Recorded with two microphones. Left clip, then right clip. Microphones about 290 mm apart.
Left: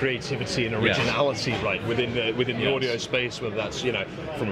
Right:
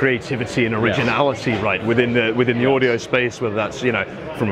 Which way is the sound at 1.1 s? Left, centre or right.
Right.